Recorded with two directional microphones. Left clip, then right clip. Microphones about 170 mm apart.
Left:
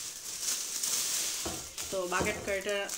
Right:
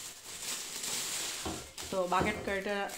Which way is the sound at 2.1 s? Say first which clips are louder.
Left 1 dB; 60° right (ahead or behind).